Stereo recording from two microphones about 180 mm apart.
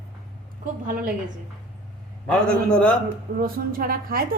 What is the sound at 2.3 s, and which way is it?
Speech, 5° left (ahead or behind).